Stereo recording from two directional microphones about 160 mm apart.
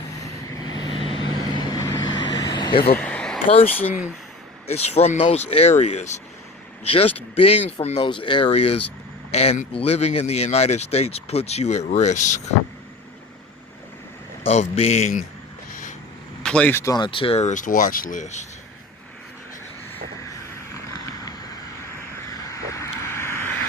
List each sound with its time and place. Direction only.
0.2 s vehicle: 20° left (ahead or behind)
3.0 s a sound: 5° left (ahead or behind)
3.4 s speech: 35° left (ahead or behind)
14.4 s speech: 40° left (ahead or behind)
15.7 s vehicle: 55° left (ahead or behind)
16.4 s speech: 5° left (ahead or behind); by 18.4 s 50° left (ahead or behind)
22.4 s vehicle: 20° left (ahead or behind)